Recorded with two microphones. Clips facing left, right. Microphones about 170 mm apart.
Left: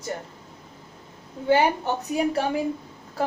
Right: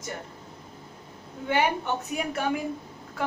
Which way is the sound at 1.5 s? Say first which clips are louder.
Left 5 dB; 35° left (ahead or behind).